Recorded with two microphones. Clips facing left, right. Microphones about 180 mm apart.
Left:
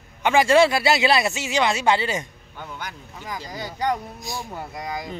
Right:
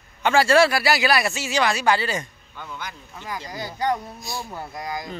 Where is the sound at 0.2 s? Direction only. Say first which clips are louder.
Left 1 dB; 15° left (ahead or behind).